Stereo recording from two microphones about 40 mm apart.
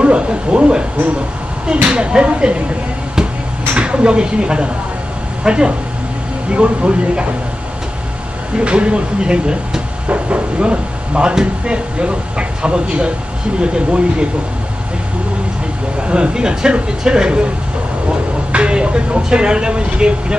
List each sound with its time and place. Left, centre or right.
0.0 s speech: right
3.7 s a woman's voice: right
8.5 s speech: right
16.0 s speech: right
18.5 s speech: right